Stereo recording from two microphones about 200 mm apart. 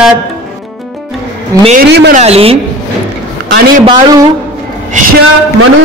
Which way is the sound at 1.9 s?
60° right (ahead or behind).